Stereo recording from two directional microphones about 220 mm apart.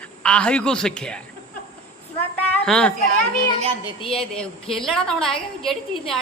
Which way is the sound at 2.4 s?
5° left (ahead or behind).